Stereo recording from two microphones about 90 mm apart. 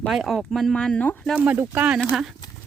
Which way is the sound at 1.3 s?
10° right (ahead or behind).